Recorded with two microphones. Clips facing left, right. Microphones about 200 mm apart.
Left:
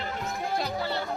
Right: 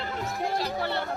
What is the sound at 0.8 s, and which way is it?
Music, 60° right (ahead or behind).